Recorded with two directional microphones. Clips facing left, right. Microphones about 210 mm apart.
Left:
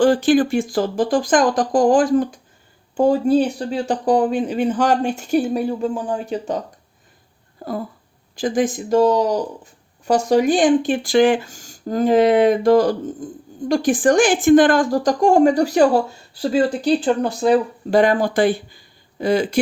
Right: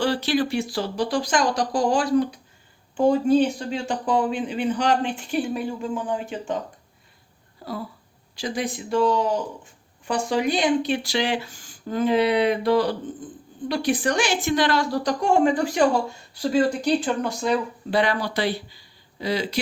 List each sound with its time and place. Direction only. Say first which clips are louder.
0.0 s speech: left 8 dB; 50° left (ahead or behind)
7.6 s speech: left 6 dB; 50° left (ahead or behind)